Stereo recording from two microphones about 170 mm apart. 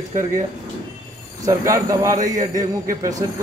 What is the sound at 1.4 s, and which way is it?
Speech, 20° right (ahead or behind).